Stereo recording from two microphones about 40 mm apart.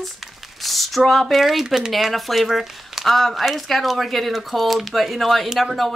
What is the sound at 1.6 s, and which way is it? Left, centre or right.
Speech, centre.